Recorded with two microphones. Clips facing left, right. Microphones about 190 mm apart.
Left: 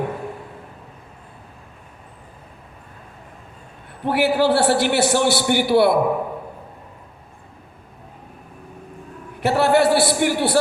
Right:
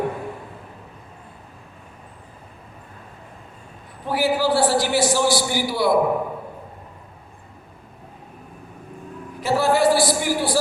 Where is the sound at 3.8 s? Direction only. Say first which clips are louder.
Left 2 dB; 60° left (ahead or behind).